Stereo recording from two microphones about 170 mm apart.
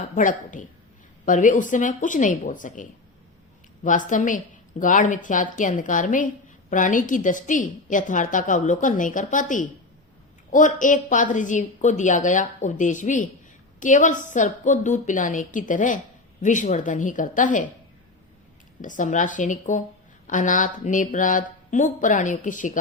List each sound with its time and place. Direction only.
0.2 s a woman's voice: 50° left (ahead or behind)
3.8 s a woman's voice: 50° left (ahead or behind)
18.8 s a woman's voice: 50° left (ahead or behind)